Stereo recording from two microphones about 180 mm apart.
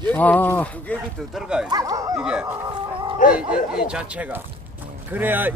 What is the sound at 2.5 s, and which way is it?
Livestock, 25° right (ahead or behind).